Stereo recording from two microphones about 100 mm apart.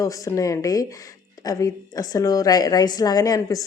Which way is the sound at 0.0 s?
35° left (ahead or behind).